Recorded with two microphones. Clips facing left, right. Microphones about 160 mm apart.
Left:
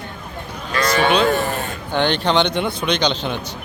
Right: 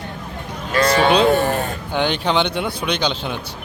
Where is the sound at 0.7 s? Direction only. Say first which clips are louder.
Right 2 dB; 30° right (ahead or behind).